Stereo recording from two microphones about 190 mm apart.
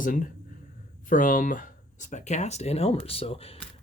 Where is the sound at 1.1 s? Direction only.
45° left (ahead or behind).